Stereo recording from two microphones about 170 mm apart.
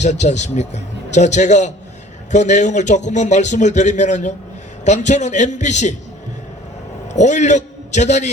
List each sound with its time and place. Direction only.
0.0 s a man's voice: 45° left (ahead or behind)
7.1 s a man's voice: 45° left (ahead or behind)